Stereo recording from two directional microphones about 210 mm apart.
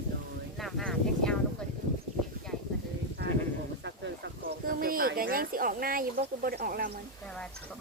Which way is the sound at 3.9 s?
55° right (ahead or behind).